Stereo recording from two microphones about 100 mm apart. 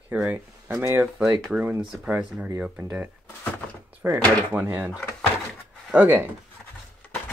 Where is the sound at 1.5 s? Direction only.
20° right (ahead or behind).